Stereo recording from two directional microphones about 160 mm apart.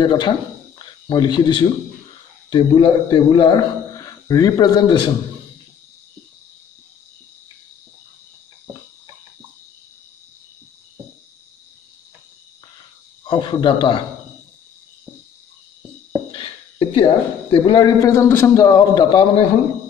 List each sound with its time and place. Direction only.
0.0 s a man's voice: 30° left (ahead or behind)
13.2 s a man's voice: 30° left (ahead or behind)
16.3 s speech: 35° left (ahead or behind)